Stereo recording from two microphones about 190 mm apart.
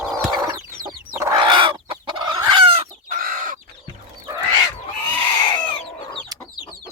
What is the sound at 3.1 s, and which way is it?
Chicken, 45° right (ahead or behind).